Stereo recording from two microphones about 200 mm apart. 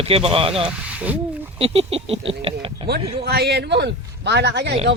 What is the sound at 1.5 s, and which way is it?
Speech, 30° right (ahead or behind).